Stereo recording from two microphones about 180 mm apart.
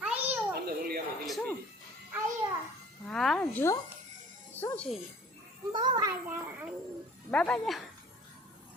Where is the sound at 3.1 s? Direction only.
5° left (ahead or behind).